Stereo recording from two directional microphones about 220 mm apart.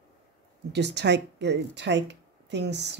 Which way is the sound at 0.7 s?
50° right (ahead or behind).